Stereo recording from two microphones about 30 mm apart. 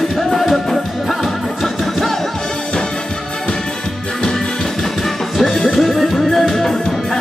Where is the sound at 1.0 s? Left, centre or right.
Centre.